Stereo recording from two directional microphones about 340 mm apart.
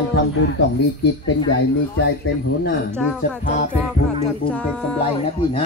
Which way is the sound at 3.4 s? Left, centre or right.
Left.